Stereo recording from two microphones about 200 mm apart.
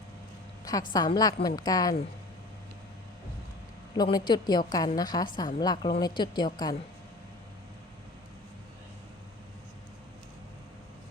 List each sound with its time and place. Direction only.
0.6 s a sound: 20° left (ahead or behind)
0.9 s a woman's voice: 20° left (ahead or behind)
3.9 s a woman's voice: 20° left (ahead or behind)